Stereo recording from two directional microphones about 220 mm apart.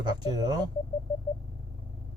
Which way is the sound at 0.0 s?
20° right (ahead or behind).